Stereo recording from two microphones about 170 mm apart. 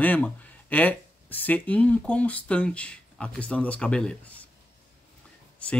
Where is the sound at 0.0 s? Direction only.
10° left (ahead or behind).